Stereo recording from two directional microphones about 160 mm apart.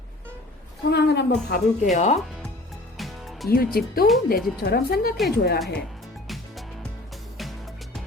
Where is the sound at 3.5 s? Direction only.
70° left (ahead or behind).